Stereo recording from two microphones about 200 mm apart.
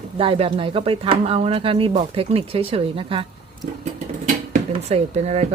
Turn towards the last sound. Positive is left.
turn(degrees=-30)  # may be behind; listen again after turning